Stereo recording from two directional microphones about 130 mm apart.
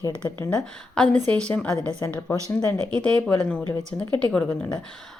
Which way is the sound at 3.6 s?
25° right (ahead or behind).